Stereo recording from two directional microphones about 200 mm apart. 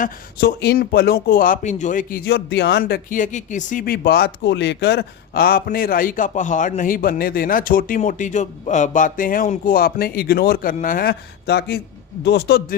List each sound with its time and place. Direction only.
0.0 s speech: 50° left (ahead or behind)